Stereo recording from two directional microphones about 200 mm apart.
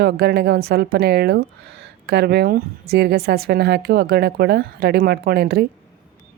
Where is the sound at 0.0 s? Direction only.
55° right (ahead or behind).